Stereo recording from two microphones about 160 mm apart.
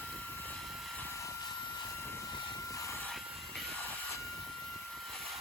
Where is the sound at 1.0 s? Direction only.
15° left (ahead or behind).